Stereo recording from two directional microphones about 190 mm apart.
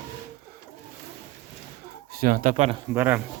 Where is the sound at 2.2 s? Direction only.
50° right (ahead or behind).